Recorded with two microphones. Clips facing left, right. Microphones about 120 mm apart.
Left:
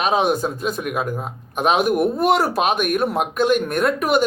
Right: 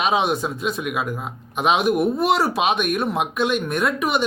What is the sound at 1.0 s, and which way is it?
Speech, 40° left (ahead or behind).